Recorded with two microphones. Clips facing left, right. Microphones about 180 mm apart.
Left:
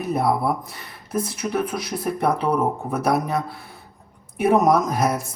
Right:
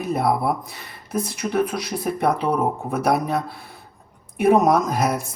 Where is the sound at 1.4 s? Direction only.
5° left (ahead or behind).